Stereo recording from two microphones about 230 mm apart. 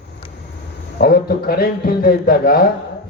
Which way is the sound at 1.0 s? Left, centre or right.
Left.